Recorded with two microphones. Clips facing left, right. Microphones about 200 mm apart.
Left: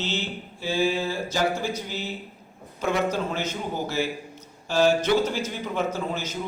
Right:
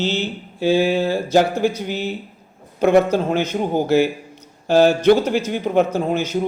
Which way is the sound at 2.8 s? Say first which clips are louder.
Right 10 dB; 60° right (ahead or behind).